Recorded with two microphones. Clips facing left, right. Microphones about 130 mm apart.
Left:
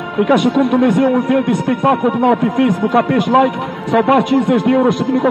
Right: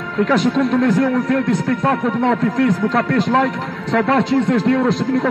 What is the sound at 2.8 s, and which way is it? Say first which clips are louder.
A man's voice: left 4 dB; 20° left (ahead or behind).